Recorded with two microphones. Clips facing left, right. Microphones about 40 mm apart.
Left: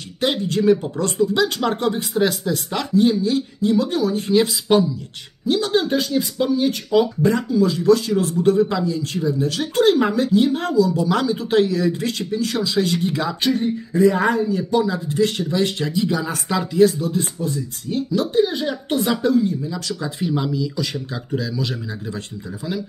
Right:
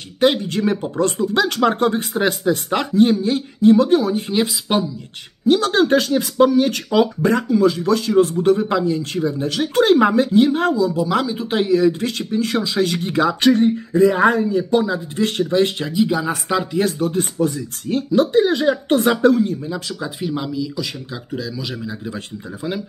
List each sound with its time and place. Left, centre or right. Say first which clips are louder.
0.2 s speech: right 3 dB; right
4.3 s speech: left 3 dB; right
5.5 s speech: right 4 dB; right
11.0 s speech: even; centre
11.8 s speech: right 4 dB; right
14.0 s speech: right 2 dB; right
15.8 s speech: right 2 dB; centre
16.7 s speech: left 3 dB; right
17.4 s speech: right 5 dB; right
19.7 s speech: right 1 dB; centre
20.2 s speech: left 1 dB; centre